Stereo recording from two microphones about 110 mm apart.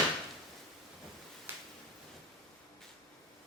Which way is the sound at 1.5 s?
20° right (ahead or behind).